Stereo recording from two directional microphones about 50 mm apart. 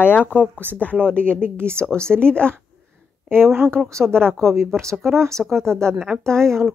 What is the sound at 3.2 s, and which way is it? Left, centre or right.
A woman's voice, right.